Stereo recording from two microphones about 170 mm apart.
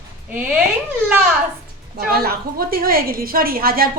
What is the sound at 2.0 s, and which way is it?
A woman's voice, 65° right (ahead or behind).